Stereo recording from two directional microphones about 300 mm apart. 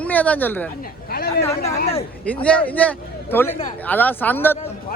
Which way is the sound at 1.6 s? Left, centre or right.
Left.